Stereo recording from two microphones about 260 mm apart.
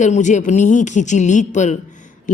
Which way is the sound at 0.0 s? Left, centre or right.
Left.